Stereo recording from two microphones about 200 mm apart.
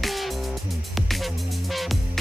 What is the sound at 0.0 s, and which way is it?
Music, centre (ahead or behind).